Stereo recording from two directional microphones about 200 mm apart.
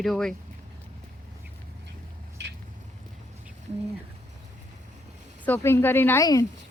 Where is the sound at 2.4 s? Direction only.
60° right (ahead or behind).